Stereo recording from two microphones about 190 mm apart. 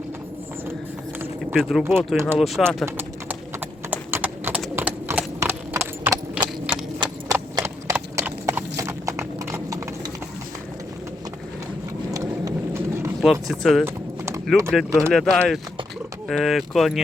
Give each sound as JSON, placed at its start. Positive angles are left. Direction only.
{"t": 1.2, "sound": "speech", "side_deg": -10}
{"t": 2.4, "sound": "speech", "side_deg": 0}
{"t": 2.8, "sound": "typing", "side_deg": -10}
{"t": 3.8, "sound": "clip-clop", "side_deg": -10}
{"t": 12.1, "sound": "vehicle", "side_deg": -15}
{"t": 13.2, "sound": "speech", "side_deg": 0}
{"t": 13.8, "sound": "clip-clop", "side_deg": -15}
{"t": 14.8, "sound": "speech", "side_deg": -15}
{"t": 15.1, "sound": "speech", "side_deg": 5}